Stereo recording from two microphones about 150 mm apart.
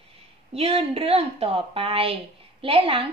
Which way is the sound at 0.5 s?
40° right (ahead or behind).